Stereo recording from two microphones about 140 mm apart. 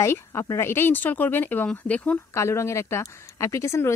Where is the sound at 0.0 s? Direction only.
20° left (ahead or behind).